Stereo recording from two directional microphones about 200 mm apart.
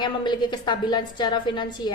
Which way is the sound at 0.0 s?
20° left (ahead or behind).